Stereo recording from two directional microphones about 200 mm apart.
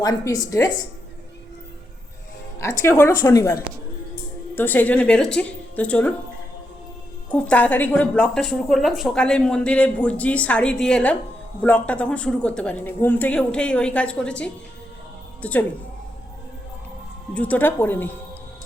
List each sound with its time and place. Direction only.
0.0 s a woman's voice: 20° left (ahead or behind)
2.6 s a woman's voice: 15° left (ahead or behind)
7.3 s a woman's voice: 5° left (ahead or behind)
17.3 s a woman's voice: 5° left (ahead or behind)